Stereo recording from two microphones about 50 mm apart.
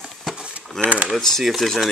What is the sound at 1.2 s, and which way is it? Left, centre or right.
Speech, centre.